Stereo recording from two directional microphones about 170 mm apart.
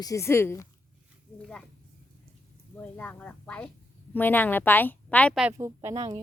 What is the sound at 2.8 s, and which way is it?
A woman's voice, 10° left (ahead or behind).